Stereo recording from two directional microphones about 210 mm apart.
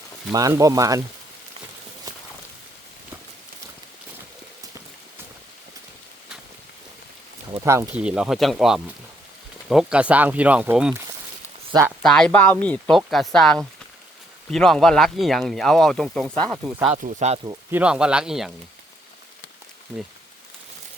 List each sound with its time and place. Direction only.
0.3 s speech: 15° right (ahead or behind)
7.6 s speech: 10° right (ahead or behind)
12.0 s speech: 5° left (ahead or behind)
16.8 s speech: 35° right (ahead or behind)
17.7 s speech: 5° right (ahead or behind)